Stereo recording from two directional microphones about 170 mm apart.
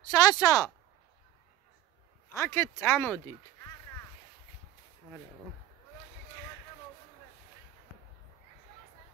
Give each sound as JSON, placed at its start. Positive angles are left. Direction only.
{"t": 0.1, "sound": "speech", "side_deg": 20}
{"t": 2.3, "sound": "speech", "side_deg": 15}